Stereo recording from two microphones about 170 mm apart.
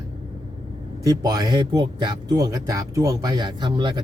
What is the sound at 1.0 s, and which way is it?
Speech, 25° right (ahead or behind).